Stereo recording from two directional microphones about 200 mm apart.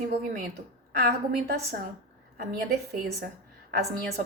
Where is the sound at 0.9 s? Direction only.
50° right (ahead or behind).